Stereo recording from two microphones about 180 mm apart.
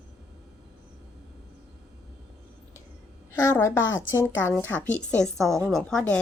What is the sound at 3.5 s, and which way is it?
A woman's voice, 15° left (ahead or behind).